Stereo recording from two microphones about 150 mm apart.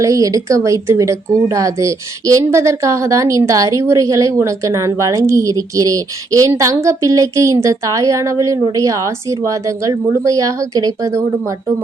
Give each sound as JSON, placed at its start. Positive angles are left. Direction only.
{"t": 0.0, "sound": "speech", "side_deg": -20}